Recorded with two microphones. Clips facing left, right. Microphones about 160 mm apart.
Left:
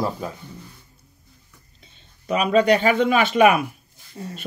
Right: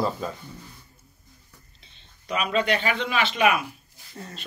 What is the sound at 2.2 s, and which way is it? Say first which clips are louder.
Speech: left 7 dB; 40° left (ahead or behind).